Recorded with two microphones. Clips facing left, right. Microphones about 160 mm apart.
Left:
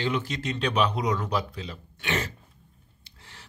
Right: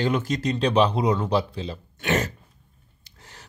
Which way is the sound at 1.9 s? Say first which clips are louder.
Right 6 dB; 45° right (ahead or behind).